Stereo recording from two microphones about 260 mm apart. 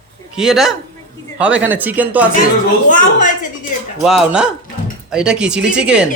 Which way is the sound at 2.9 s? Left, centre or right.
Left.